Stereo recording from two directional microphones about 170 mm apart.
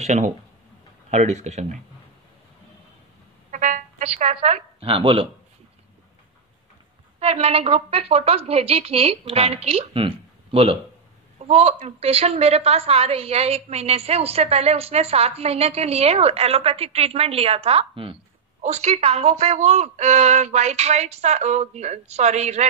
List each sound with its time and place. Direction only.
0.0 s a woman's voice: 40° right (ahead or behind)
3.5 s music: 50° right (ahead or behind); by 5.3 s 30° right (ahead or behind)
7.2 s a woman's voice: 40° right (ahead or behind)